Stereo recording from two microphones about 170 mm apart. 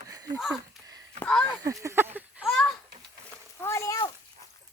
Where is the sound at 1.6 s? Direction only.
20° right (ahead or behind).